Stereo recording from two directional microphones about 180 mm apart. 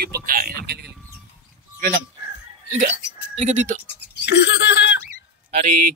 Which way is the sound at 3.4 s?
40° right (ahead or behind).